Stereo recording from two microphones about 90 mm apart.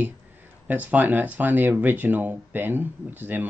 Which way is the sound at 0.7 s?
20° right (ahead or behind).